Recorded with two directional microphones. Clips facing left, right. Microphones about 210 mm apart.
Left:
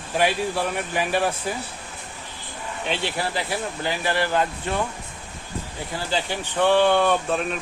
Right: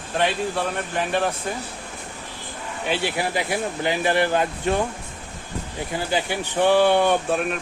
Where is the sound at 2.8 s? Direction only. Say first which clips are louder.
Right 3 dB; 10° right (ahead or behind).